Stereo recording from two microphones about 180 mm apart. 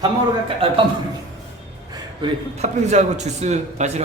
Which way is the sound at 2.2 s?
40° right (ahead or behind).